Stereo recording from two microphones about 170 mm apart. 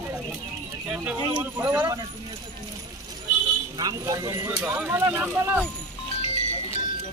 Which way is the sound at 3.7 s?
20° right (ahead or behind).